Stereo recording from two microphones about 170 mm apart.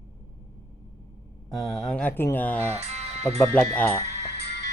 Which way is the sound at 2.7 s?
40° right (ahead or behind).